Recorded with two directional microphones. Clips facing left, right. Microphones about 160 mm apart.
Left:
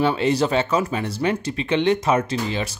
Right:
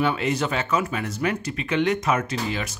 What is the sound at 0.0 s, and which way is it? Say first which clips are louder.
Speech: left 4 dB; 30° left (ahead or behind).